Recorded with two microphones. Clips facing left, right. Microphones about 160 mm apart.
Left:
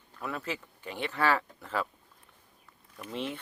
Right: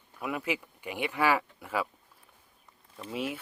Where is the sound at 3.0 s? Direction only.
10° right (ahead or behind).